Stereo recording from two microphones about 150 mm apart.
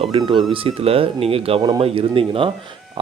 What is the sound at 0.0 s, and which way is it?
Speech, 35° right (ahead or behind).